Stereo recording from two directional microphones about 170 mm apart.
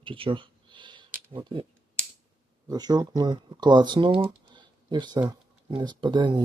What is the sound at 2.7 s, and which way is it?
Speech, 25° right (ahead or behind).